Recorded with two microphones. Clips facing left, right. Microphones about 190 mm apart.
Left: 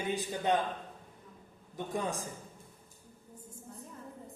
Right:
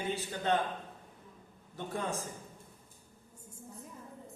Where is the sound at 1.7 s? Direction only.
15° left (ahead or behind).